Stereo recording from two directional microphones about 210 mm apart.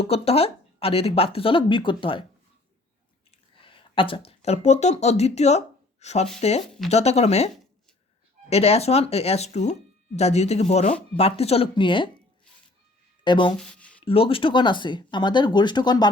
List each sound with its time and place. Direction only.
0.0 s speech: 30° left (ahead or behind)
3.5 s speech: 25° left (ahead or behind)
13.2 s speech: 20° left (ahead or behind)
13.6 s a sound: 5° left (ahead or behind)
14.0 s speech: 25° left (ahead or behind)